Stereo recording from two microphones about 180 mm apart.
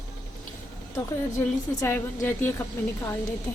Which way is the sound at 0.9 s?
15° left (ahead or behind).